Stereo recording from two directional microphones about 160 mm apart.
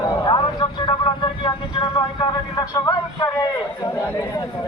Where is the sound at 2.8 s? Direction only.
20° left (ahead or behind).